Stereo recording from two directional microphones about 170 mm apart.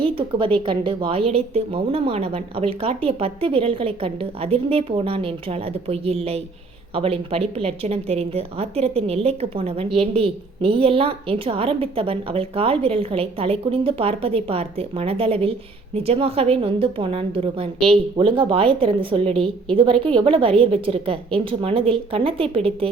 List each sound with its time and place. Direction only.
0.0 s a woman's voice: 30° right (ahead or behind)